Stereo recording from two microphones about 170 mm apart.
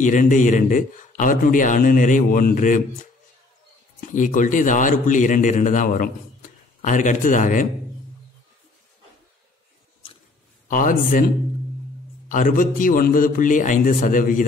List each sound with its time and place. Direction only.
0.0 s a man's voice: 50° left (ahead or behind)
4.1 s a man's voice: 50° left (ahead or behind)
10.7 s a man's voice: 50° left (ahead or behind)
12.3 s a man's voice: 50° left (ahead or behind)